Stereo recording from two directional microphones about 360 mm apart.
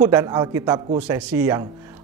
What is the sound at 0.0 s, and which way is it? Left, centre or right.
A man's voice, centre.